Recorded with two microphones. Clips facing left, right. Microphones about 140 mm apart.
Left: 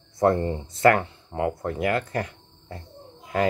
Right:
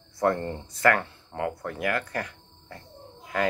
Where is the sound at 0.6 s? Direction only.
25° left (ahead or behind).